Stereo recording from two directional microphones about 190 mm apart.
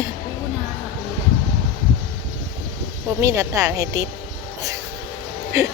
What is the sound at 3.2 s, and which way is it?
Speech, 15° right (ahead or behind).